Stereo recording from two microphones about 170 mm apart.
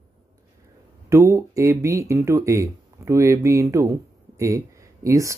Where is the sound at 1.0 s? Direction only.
15° right (ahead or behind).